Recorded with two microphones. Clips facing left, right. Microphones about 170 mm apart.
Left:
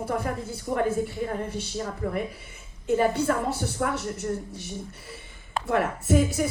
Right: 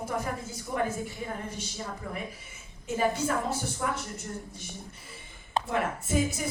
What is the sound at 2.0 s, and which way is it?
Speech, 55° left (ahead or behind).